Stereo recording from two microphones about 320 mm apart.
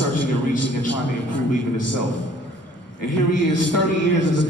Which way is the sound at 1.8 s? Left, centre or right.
Left.